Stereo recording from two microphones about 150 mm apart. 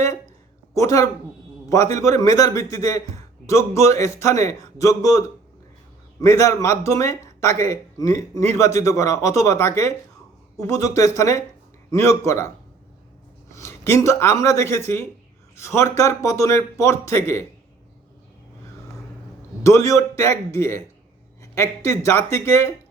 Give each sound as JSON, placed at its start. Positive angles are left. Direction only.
{"t": 0.7, "sound": "speech", "side_deg": 20}
{"t": 13.5, "sound": "speech", "side_deg": 20}
{"t": 19.6, "sound": "speech", "side_deg": 20}